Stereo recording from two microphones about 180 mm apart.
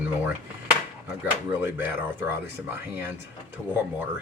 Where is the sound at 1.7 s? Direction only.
10° right (ahead or behind).